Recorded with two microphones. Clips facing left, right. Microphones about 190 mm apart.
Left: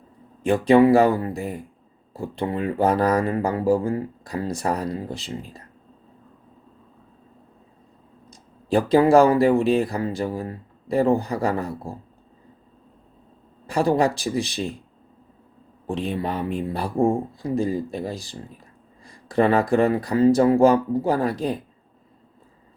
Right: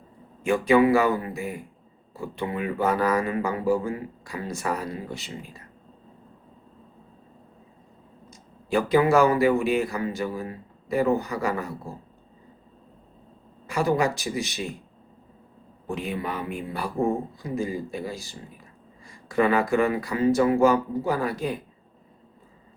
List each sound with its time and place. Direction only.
0.4 s speech: 35° left (ahead or behind)
8.3 s speech: 35° left (ahead or behind)
13.7 s speech: 35° left (ahead or behind)
15.9 s speech: 35° left (ahead or behind)